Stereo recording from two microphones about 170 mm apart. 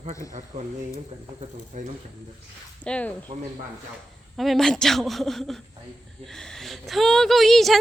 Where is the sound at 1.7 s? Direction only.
50° right (ahead or behind).